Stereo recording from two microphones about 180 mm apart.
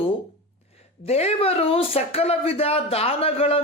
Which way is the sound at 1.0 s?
35° left (ahead or behind).